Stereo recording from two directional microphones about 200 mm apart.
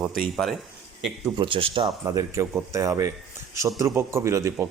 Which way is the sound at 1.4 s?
25° right (ahead or behind).